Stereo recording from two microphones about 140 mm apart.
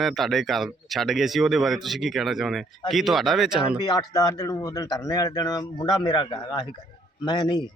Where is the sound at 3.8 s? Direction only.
30° left (ahead or behind).